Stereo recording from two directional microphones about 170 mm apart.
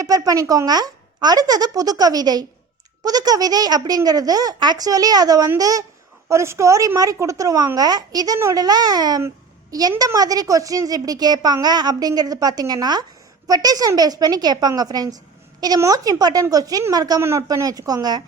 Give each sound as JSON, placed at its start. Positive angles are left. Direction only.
{"t": 0.0, "sound": "a woman's voice", "side_deg": -20}